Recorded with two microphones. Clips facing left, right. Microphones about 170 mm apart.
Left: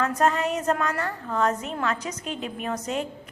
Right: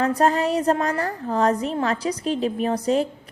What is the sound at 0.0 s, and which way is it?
A woman's voice, 35° right (ahead or behind).